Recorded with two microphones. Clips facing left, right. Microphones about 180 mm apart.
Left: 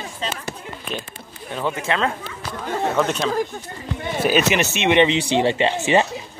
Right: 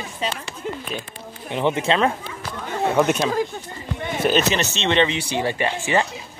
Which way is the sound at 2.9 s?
10° right (ahead or behind).